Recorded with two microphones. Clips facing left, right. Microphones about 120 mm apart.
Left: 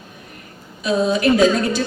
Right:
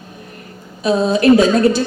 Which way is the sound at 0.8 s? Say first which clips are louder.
Right 4 dB; 30° right (ahead or behind).